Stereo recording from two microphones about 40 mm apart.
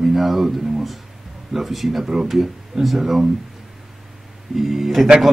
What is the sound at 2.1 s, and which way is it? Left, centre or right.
Speech, centre.